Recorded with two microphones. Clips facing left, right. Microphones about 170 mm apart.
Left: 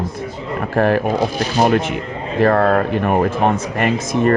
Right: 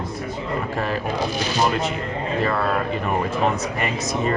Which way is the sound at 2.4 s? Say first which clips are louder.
Left 11 dB; 50° left (ahead or behind).